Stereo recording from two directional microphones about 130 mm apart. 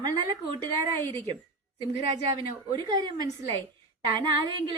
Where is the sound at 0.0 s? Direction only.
35° right (ahead or behind).